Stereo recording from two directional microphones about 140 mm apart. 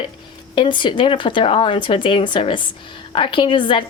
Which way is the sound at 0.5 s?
35° left (ahead or behind).